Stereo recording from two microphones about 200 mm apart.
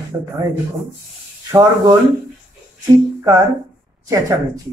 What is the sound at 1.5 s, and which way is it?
Speech, 20° right (ahead or behind).